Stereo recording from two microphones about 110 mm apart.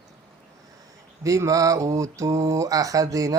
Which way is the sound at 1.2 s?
30° right (ahead or behind).